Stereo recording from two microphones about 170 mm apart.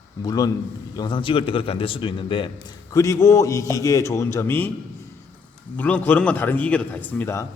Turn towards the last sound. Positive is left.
turn(degrees=15)  # may be behind; listen again after turning